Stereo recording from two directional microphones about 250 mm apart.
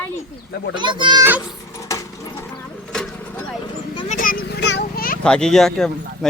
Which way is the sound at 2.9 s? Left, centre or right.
Centre.